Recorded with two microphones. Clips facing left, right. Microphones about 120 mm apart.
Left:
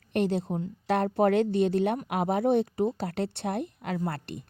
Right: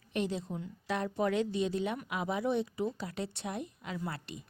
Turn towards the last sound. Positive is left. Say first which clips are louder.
# left 7 dB
turn(degrees=55)  # may be behind; listen again after turning